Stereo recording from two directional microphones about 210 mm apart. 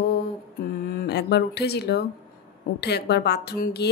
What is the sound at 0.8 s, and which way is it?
Speech, 50° left (ahead or behind).